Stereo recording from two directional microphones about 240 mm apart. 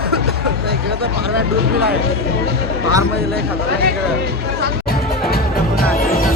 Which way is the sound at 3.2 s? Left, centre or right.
Right.